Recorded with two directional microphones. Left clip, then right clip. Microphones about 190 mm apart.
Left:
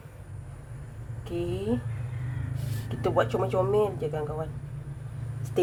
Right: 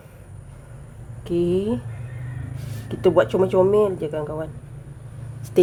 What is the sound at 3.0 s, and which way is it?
Speech, 55° right (ahead or behind).